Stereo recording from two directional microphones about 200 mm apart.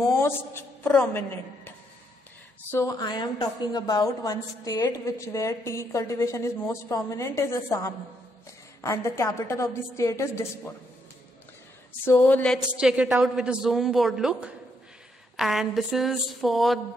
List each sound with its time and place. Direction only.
0.0 s a woman's voice: 10° left (ahead or behind)
2.7 s a woman's voice: 15° left (ahead or behind)
12.0 s a woman's voice: 10° left (ahead or behind)
12.7 s a woman's voice: 5° right (ahead or behind)